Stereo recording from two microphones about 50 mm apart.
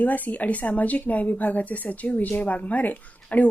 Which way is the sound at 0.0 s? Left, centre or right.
Left.